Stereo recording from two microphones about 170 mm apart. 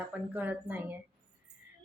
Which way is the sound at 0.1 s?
10° right (ahead or behind).